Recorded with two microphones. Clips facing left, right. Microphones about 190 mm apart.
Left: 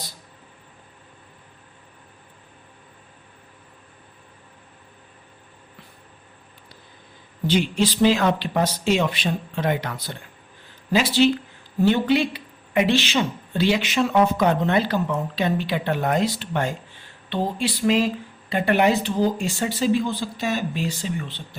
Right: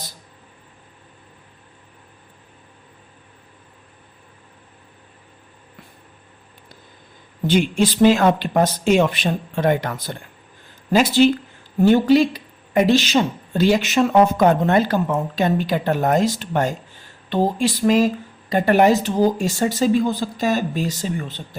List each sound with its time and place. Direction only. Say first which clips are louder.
7.4 s speech: right 3 dB; 50° right (ahead or behind)